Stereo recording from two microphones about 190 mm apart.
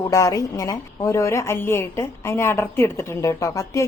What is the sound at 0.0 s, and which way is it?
A woman's voice, 15° left (ahead or behind).